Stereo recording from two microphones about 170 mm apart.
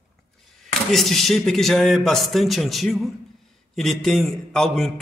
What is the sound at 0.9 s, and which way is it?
A man's voice, centre (ahead or behind).